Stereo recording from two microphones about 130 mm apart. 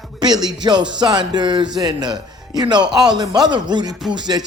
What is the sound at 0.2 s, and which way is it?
Speech, 30° right (ahead or behind).